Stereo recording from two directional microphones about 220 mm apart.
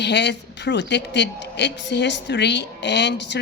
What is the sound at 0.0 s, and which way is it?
Speech, 50° left (ahead or behind).